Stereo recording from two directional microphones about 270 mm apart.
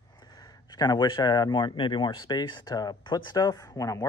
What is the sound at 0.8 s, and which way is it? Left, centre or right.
Speech, centre.